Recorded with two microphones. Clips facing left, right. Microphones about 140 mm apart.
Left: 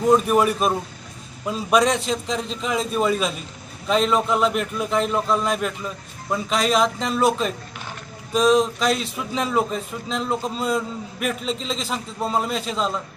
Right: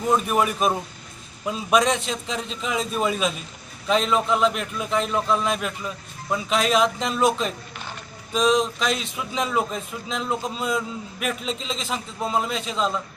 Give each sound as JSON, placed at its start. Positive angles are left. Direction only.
{"t": 0.3, "sound": "a man's voice", "side_deg": 0}